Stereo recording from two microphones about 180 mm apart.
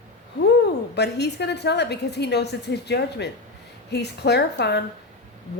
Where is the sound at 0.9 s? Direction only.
65° left (ahead or behind).